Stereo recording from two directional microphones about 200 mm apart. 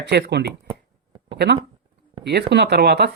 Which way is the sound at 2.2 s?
55° right (ahead or behind).